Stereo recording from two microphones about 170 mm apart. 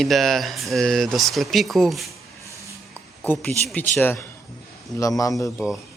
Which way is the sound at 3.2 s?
10° left (ahead or behind).